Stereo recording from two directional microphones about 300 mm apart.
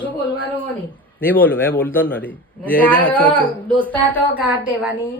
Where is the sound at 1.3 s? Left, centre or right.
Centre.